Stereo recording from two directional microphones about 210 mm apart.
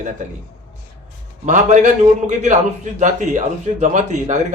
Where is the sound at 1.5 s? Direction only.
35° right (ahead or behind).